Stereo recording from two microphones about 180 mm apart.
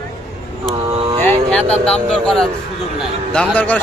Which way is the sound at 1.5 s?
5° left (ahead or behind).